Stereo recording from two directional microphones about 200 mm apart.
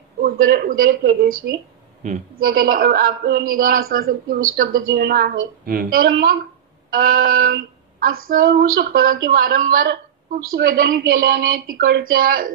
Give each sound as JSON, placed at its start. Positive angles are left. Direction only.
{"t": 0.2, "sound": "a man's voice", "side_deg": -50}
{"t": 2.4, "sound": "a man's voice", "side_deg": -50}